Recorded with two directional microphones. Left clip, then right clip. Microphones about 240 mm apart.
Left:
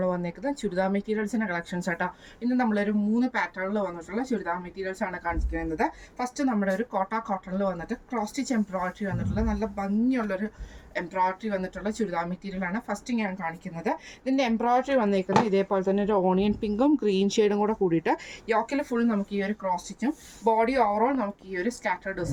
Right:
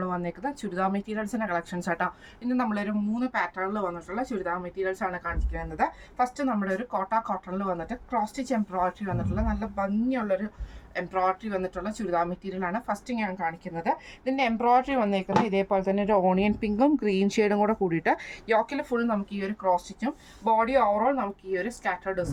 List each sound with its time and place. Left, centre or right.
0.0 s speech: centre
17.1 s speech: right
17.5 s speech: centre